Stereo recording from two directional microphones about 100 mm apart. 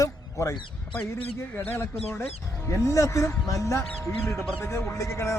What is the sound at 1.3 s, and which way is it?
Speech, 20° left (ahead or behind).